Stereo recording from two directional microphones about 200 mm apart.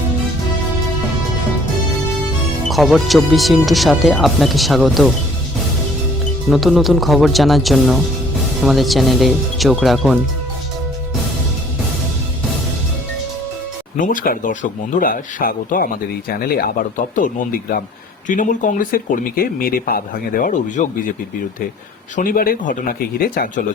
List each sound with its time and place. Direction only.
2.6 s speech: centre (ahead or behind)
6.5 s speech: centre (ahead or behind)
13.9 s speech: 40° left (ahead or behind)
22.1 s speech: 45° left (ahead or behind)